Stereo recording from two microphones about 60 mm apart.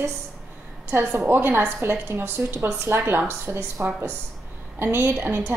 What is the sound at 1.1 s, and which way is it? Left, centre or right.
A woman's voice, right.